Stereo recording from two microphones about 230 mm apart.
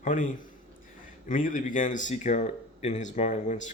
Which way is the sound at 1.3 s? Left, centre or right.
Left.